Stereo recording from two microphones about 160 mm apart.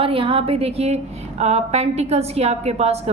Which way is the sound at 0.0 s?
35° right (ahead or behind).